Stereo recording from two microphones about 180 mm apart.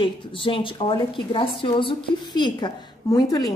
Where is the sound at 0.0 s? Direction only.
30° left (ahead or behind).